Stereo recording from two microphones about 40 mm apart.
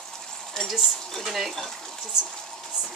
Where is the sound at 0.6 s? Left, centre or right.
Centre.